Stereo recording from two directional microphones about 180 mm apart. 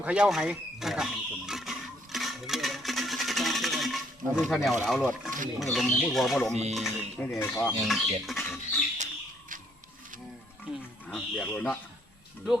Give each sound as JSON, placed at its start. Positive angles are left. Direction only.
{"t": 0.0, "sound": "speech", "side_deg": -5}
{"t": 2.1, "sound": "a sound", "side_deg": 0}
{"t": 5.7, "sound": "speech", "side_deg": 0}
{"t": 6.5, "sound": "music", "side_deg": -40}
{"t": 6.7, "sound": "speech", "side_deg": 0}
{"t": 7.3, "sound": "speech", "side_deg": 15}
{"t": 7.9, "sound": "bird", "side_deg": 0}
{"t": 10.7, "sound": "music", "side_deg": -5}
{"t": 11.1, "sound": "speech", "side_deg": 5}